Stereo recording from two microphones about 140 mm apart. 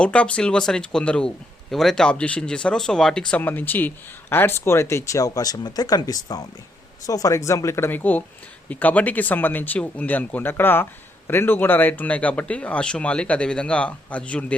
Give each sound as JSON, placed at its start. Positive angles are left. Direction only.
{"t": 0.0, "sound": "speech", "side_deg": 10}